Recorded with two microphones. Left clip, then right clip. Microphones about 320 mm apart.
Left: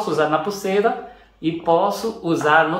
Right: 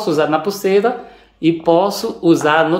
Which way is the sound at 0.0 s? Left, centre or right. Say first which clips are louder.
Right 3 dB; right.